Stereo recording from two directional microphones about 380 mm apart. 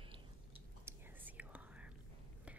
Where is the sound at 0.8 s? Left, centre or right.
Centre.